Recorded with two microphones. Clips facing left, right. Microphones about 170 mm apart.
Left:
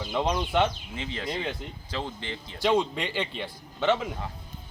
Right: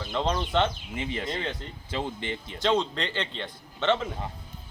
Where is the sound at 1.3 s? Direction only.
5° left (ahead or behind).